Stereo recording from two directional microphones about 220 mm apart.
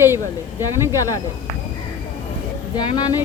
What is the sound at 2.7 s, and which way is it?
Speech, 20° left (ahead or behind).